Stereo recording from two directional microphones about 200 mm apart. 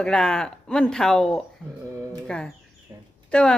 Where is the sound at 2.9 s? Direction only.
15° right (ahead or behind).